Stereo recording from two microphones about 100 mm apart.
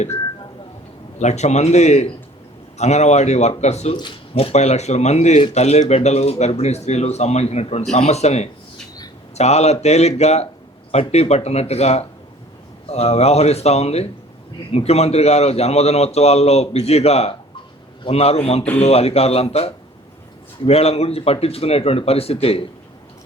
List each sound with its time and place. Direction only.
1.3 s a man's voice: 90° left
3.2 s a man's voice: 90° left; by 22.6 s 75° left (ahead or behind)